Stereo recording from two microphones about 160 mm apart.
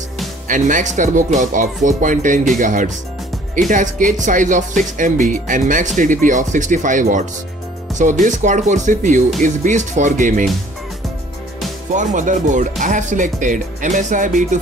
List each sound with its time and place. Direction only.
0.5 s speech: 55° right (ahead or behind)
11.9 s speech: 50° right (ahead or behind)